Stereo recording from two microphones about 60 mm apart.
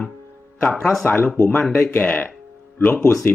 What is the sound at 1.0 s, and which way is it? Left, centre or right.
Speech, left.